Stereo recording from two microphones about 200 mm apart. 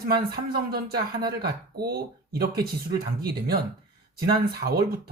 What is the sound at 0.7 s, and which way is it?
Speech, 50° right (ahead or behind).